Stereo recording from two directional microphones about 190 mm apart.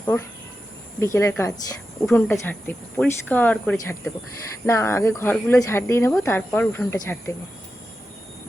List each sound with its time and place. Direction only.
0.0 s speech: 10° left (ahead or behind)